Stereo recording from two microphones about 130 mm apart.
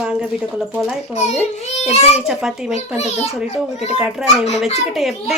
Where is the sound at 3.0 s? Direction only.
55° left (ahead or behind).